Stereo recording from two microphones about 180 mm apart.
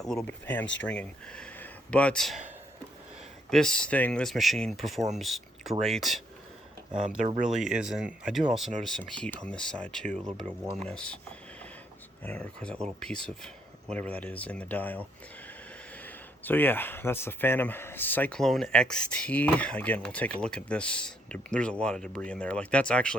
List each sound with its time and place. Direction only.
0.0 s speech: 5° left (ahead or behind)
0.6 s speech: 90° left
0.9 s speech: 5° left (ahead or behind)
3.5 s speech: 5° left (ahead or behind)
7.2 s speech: 40° right (ahead or behind)
7.4 s speech: 5° right (ahead or behind)
12.2 s speech: 10° left (ahead or behind)
16.0 s speech: 10° left (ahead or behind)